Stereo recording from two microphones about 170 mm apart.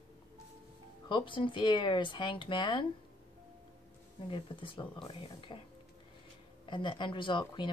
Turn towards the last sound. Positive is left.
turn(degrees=30)  # may be behind; listen again after turning